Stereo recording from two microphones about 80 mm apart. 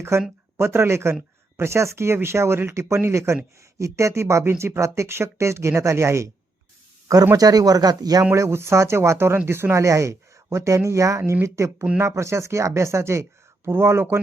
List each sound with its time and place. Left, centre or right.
0.1 s speech: right
7.3 s speech: right
8.4 s speech: right